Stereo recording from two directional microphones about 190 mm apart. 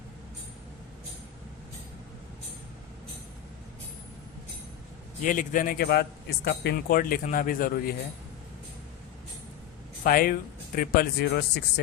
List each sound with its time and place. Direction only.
5.2 s a man's voice: 45° left (ahead or behind)
10.0 s a man's voice: 50° left (ahead or behind)